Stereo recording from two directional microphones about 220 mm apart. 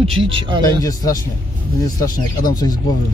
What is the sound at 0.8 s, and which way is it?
Speech, 15° left (ahead or behind).